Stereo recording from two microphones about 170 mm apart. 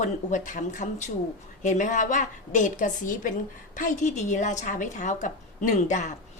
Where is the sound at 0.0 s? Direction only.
45° left (ahead or behind).